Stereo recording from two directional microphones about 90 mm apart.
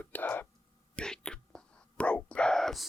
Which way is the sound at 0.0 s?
20° left (ahead or behind).